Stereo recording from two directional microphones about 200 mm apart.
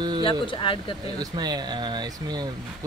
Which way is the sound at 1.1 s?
20° right (ahead or behind).